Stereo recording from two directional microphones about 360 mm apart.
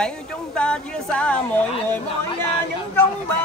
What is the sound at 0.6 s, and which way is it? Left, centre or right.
A woman's voice, centre.